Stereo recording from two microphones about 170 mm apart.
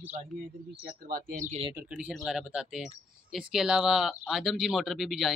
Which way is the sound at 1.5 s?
35° right (ahead or behind).